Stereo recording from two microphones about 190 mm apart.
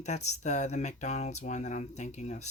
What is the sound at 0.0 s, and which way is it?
Speech, 35° left (ahead or behind).